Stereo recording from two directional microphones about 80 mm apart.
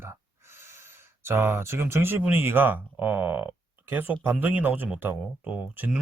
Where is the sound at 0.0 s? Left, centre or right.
Right.